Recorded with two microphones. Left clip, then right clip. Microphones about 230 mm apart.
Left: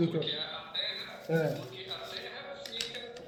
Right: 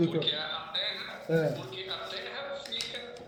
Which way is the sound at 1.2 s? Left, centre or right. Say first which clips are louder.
Right 2 dB; centre.